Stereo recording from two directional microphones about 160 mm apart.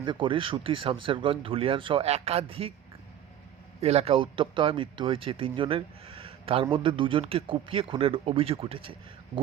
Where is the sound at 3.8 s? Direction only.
40° right (ahead or behind).